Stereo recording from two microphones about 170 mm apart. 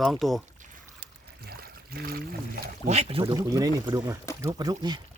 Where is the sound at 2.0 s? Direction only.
65° right (ahead or behind).